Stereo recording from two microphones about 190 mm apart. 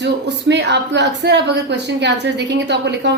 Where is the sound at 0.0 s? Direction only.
65° right (ahead or behind).